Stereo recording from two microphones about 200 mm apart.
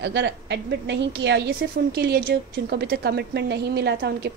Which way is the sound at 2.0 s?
50° right (ahead or behind).